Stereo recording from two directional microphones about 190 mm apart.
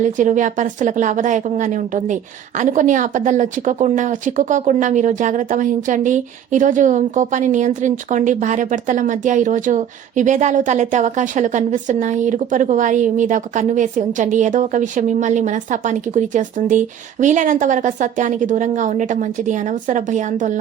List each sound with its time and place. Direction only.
0.0 s a woman's voice: 40° right (ahead or behind)